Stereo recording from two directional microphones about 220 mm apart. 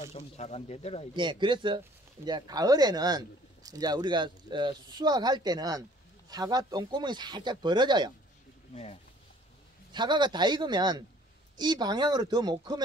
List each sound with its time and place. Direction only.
0.1 s speech: 30° left (ahead or behind)
1.1 s speech: 20° right (ahead or behind)
8.7 s speech: 25° left (ahead or behind)
9.9 s speech: 20° right (ahead or behind)